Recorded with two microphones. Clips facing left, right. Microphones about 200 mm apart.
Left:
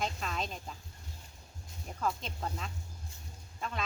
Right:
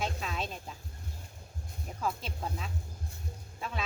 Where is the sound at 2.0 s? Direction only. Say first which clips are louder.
Even; 5° right (ahead or behind).